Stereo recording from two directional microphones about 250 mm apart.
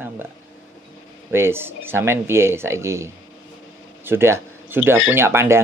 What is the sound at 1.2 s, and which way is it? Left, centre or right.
Speech, centre.